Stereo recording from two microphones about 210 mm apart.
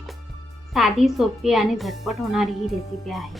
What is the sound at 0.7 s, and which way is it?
A woman's voice, centre (ahead or behind).